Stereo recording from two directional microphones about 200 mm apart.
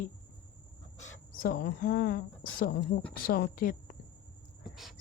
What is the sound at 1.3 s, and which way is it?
Speech, 45° left (ahead or behind).